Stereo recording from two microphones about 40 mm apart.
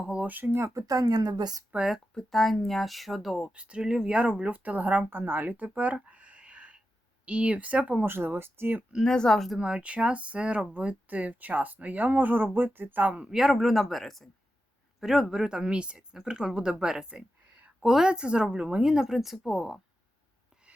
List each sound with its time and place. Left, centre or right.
0.0 s a sound: right
1.7 s speech: right
2.1 s speech: centre
3.5 s speech: right
5.1 s a sound: right
7.3 s speech: right
8.0 s speech: right
9.0 s speech: centre
9.6 s speech: right
13.2 s speech: centre
15.0 s speech: centre
18.9 s speech: centre